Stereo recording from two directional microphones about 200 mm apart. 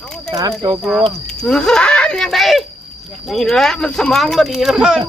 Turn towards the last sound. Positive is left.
turn(degrees=-5)  # may be behind; listen again after turning